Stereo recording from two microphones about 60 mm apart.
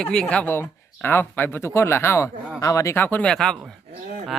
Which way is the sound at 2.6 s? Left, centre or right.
Left.